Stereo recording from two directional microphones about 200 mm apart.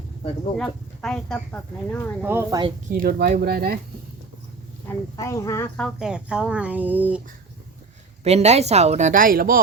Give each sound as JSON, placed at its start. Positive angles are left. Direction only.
{"t": 0.5, "sound": "speech", "side_deg": 5}
{"t": 2.2, "sound": "speech", "side_deg": -10}
{"t": 2.9, "sound": "speech", "side_deg": -45}
{"t": 5.1, "sound": "speech", "side_deg": 15}
{"t": 5.7, "sound": "speech", "side_deg": 0}
{"t": 8.2, "sound": "a woman's voice", "side_deg": -35}